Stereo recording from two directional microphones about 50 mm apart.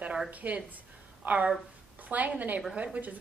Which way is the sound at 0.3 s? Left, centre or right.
Right.